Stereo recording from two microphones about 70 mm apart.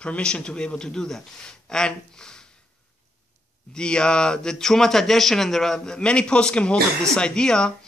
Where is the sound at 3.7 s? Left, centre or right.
Centre.